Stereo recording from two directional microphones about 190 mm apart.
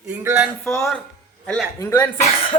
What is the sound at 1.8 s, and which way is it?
Speech, 15° left (ahead or behind).